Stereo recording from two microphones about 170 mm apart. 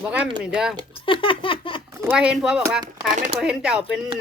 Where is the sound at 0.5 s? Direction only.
5° right (ahead or behind).